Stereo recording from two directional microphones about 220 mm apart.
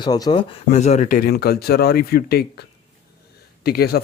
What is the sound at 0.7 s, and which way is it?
Speech, 30° left (ahead or behind).